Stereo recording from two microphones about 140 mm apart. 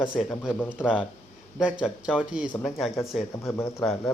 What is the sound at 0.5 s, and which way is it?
Speech, 10° left (ahead or behind).